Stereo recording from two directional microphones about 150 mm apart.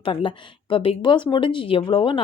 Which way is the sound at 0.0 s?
35° left (ahead or behind).